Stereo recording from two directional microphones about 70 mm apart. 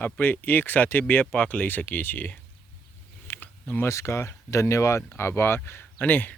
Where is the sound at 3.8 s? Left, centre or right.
Left.